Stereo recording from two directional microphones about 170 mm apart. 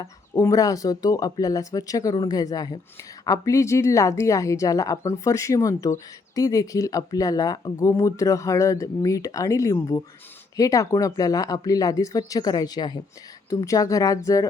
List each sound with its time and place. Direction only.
0.0 s a woman's voice: 20° left (ahead or behind)